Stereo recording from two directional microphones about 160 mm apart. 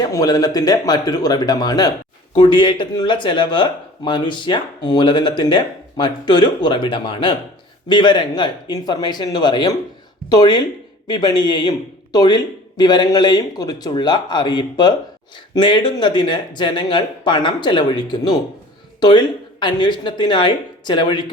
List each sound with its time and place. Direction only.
0.0 s speech: 25° left (ahead or behind)